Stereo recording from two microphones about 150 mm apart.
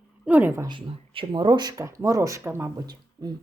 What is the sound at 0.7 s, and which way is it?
Speech, 35° right (ahead or behind).